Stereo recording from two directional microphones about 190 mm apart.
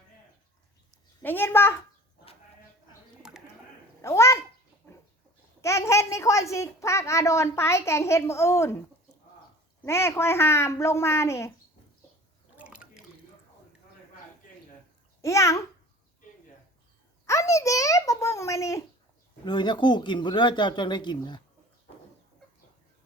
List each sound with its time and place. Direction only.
1.2 s a woman's voice: 10° left (ahead or behind)
3.2 s bird: 5° right (ahead or behind)
4.0 s a woman's voice: 15° left (ahead or behind)
4.8 s pig: 5° left (ahead or behind)
5.6 s a woman's voice: 15° left (ahead or behind)
9.8 s a woman's voice: 15° left (ahead or behind)
12.5 s drip: 5° right (ahead or behind)
15.2 s a child's voice: 15° left (ahead or behind)
17.2 s a child's voice: 15° left (ahead or behind)